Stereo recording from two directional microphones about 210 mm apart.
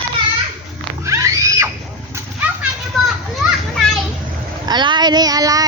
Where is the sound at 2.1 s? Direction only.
10° right (ahead or behind).